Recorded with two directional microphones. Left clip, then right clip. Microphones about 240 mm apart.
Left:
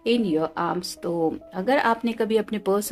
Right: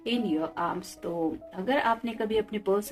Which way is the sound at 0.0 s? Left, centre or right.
Left.